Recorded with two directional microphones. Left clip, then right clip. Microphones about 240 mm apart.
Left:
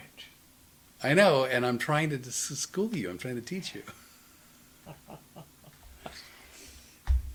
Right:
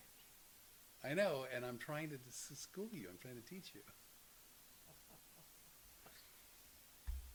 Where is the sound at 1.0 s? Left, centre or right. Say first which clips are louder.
Left 17 dB; centre.